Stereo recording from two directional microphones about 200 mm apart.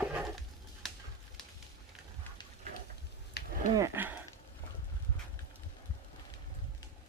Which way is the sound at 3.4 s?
55° left (ahead or behind).